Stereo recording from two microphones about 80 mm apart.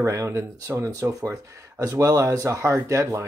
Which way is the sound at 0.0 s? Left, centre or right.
Right.